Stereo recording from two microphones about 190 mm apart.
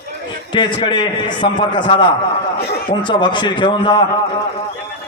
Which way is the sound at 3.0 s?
25° left (ahead or behind).